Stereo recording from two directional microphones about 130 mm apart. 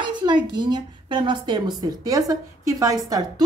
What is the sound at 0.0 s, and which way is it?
A woman's voice, 35° right (ahead or behind).